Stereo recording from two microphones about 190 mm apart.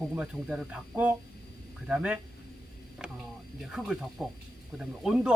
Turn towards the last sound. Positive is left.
turn(degrees=-5)  # may be behind; listen again after turning